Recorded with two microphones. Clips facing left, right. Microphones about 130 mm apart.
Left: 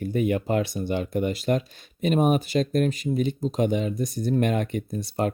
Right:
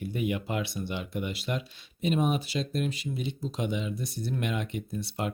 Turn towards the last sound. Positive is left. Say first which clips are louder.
# left 6 dB
turn(degrees=45)  # may be behind; listen again after turning